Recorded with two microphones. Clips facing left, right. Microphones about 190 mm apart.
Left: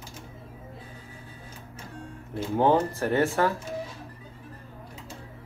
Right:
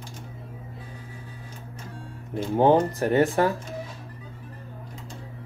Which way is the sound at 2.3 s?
15° right (ahead or behind).